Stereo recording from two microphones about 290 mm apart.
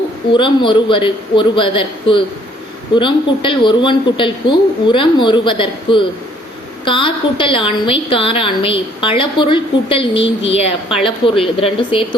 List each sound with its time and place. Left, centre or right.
0.3 s a woman's voice: centre